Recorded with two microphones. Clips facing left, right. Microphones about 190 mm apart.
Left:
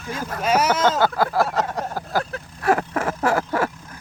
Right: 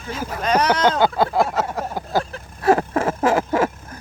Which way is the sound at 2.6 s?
25° right (ahead or behind).